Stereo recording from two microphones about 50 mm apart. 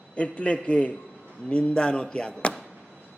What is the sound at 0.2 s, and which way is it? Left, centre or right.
A man's voice, left.